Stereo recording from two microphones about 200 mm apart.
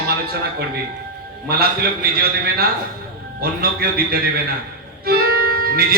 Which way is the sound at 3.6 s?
50° right (ahead or behind).